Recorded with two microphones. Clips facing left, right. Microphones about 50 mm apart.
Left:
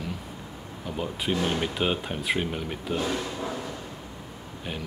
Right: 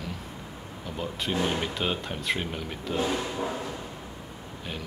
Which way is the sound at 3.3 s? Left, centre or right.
Centre.